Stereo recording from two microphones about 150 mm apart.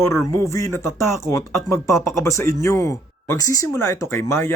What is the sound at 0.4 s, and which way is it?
Speech, 20° left (ahead or behind).